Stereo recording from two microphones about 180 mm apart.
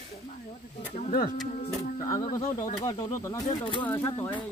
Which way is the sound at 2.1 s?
20° left (ahead or behind).